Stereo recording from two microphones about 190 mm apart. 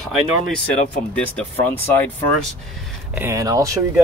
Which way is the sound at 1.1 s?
5° left (ahead or behind).